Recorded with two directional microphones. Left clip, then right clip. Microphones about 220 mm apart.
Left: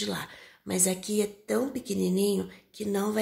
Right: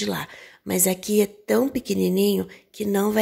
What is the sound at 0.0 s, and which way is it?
Speech, 35° right (ahead or behind).